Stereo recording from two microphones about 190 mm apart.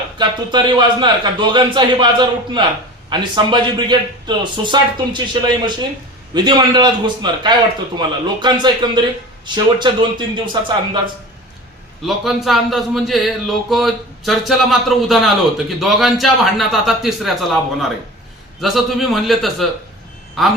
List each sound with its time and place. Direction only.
0.2 s speech: 25° right (ahead or behind)
12.0 s a man's voice: centre (ahead or behind)